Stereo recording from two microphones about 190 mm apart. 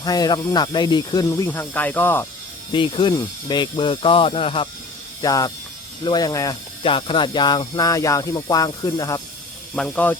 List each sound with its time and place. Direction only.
0.0 s speech: 20° left (ahead or behind)
1.5 s speech: 10° left (ahead or behind)
2.7 s speech: 25° left (ahead or behind)
5.2 s speech: 20° left (ahead or behind)
9.7 s speech: 5° left (ahead or behind)